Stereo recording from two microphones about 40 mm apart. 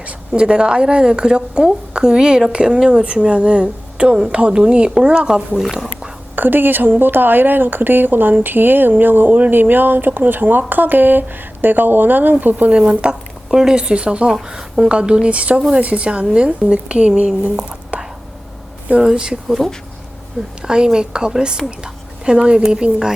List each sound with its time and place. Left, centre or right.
0.3 s speech: right
6.3 s a woman's voice: right
12.9 s speech: right
13.5 s speech: centre
13.7 s speech: right
17.4 s whispering: right
19.1 s speech: centre
20.6 s a woman's voice: centre